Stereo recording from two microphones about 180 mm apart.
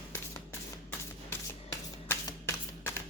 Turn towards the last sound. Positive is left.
turn(degrees=15)  # may be behind; listen again after turning